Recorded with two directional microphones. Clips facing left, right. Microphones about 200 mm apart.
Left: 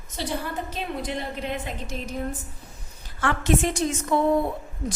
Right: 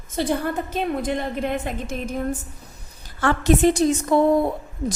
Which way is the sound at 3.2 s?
35° right (ahead or behind).